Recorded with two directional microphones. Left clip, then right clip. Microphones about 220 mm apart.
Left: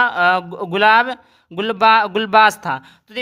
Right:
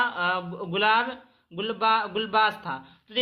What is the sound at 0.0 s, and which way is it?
Speech, 50° left (ahead or behind).